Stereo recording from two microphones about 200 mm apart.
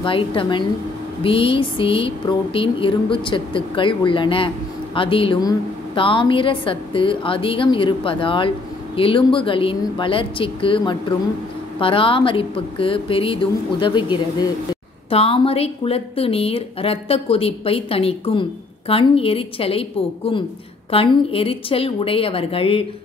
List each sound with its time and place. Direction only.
0.0 s a woman's voice: 25° left (ahead or behind)